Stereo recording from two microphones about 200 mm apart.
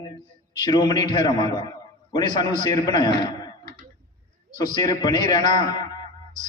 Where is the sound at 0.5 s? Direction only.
20° left (ahead or behind).